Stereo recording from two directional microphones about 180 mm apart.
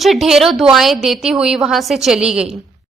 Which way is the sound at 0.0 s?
Centre (ahead or behind).